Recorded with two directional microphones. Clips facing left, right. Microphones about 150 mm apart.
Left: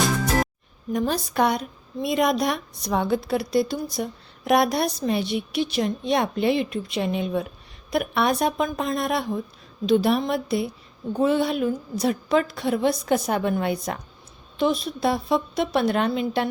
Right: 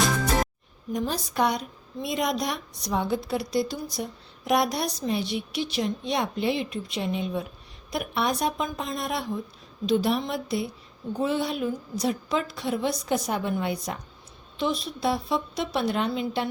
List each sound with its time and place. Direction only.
0.0 s music: centre (ahead or behind)
0.9 s a woman's voice: 60° left (ahead or behind)